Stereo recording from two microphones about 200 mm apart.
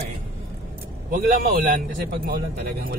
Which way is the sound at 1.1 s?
45° right (ahead or behind).